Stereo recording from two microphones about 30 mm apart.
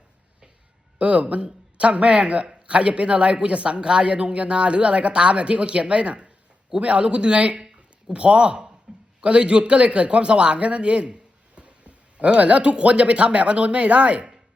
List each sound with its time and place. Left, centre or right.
0.9 s speech: right
11.6 s a sound: right
12.8 s speech: right